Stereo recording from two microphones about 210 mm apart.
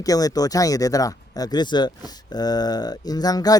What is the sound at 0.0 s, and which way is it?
Speech, 15° left (ahead or behind).